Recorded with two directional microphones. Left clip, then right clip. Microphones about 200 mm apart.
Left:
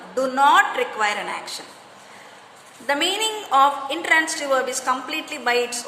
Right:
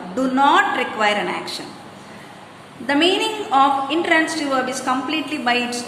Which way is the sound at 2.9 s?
30° left (ahead or behind).